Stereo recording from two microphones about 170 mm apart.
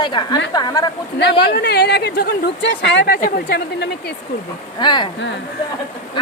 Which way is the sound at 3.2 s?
55° left (ahead or behind).